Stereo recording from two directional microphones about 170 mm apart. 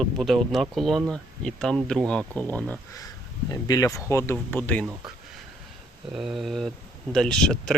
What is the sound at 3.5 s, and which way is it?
Speech, 20° left (ahead or behind).